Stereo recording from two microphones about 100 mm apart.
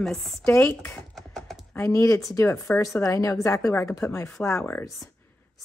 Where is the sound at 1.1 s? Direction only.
5° left (ahead or behind).